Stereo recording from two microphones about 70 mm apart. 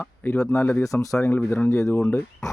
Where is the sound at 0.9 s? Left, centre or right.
Left.